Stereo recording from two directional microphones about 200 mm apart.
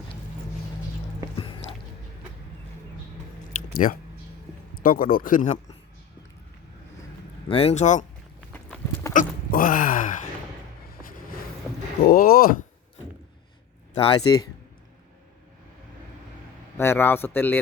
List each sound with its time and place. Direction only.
3.8 s speech: 35° left (ahead or behind)
7.4 s speech: 30° left (ahead or behind)
8.5 s dog: 10° left (ahead or behind)
9.1 s a sound: 45° left (ahead or behind)
12.0 s speech: 45° left (ahead or behind)
13.9 s speech: 25° left (ahead or behind)
16.7 s a man's voice: 10° left (ahead or behind)